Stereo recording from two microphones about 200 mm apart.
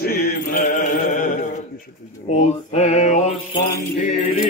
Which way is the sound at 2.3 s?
35° left (ahead or behind).